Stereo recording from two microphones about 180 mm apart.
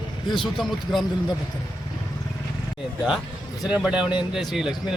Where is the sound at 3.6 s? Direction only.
5° right (ahead or behind).